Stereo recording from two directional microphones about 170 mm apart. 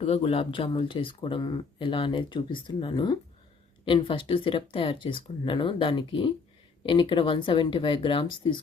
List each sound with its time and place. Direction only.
0.0 s speech: 35° left (ahead or behind)